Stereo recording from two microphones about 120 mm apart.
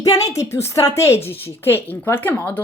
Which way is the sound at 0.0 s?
30° left (ahead or behind).